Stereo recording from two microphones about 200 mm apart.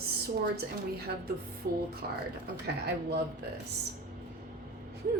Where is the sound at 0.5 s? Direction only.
50° right (ahead or behind).